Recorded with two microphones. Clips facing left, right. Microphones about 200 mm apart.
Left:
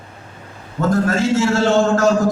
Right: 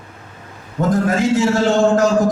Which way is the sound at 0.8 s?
15° right (ahead or behind).